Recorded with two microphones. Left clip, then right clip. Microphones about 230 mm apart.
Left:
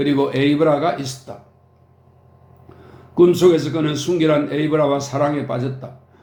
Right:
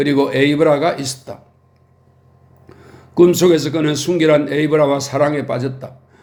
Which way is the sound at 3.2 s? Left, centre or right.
Right.